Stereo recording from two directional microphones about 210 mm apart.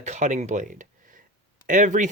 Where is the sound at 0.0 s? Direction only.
35° right (ahead or behind).